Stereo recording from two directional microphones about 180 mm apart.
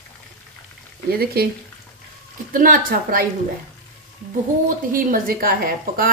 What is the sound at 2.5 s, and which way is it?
Speech, 50° right (ahead or behind).